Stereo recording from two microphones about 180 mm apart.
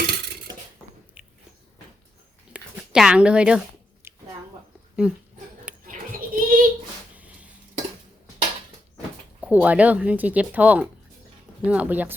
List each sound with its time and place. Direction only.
0.0 s dishes: 60° right (ahead or behind)
1.2 s biting: 5° right (ahead or behind)
2.5 s a sound: 5° right (ahead or behind)
5.0 s speech: 5° right (ahead or behind)
5.8 s goat: 50° right (ahead or behind)
7.2 s cutlery: 5° right (ahead or behind)
9.4 s speech: 10° right (ahead or behind)